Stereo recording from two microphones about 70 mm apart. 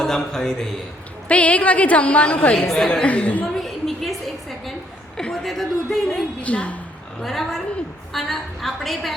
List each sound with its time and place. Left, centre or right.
0.0 s speech: centre
1.3 s a woman's voice: centre
3.4 s a sound: centre
5.1 s a woman's voice: centre
6.4 s a woman's voice: centre
7.2 s a woman's voice: centre